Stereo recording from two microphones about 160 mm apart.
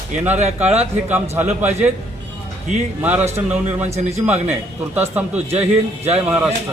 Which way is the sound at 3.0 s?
10° right (ahead or behind).